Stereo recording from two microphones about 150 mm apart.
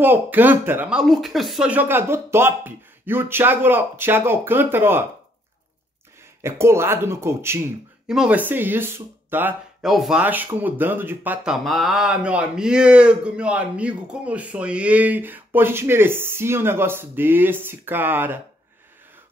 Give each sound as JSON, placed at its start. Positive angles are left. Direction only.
{"t": 0.0, "sound": "speech", "side_deg": -15}
{"t": 6.4, "sound": "speech", "side_deg": -15}
{"t": 8.1, "sound": "speech", "side_deg": -5}
{"t": 9.8, "sound": "speech", "side_deg": 0}